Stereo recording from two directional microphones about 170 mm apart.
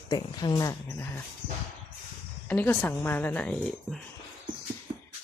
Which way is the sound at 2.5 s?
10° left (ahead or behind).